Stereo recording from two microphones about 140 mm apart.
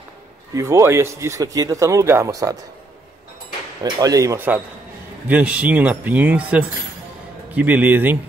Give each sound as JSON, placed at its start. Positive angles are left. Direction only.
{"t": 0.6, "sound": "speech", "side_deg": -20}
{"t": 4.0, "sound": "speech", "side_deg": -25}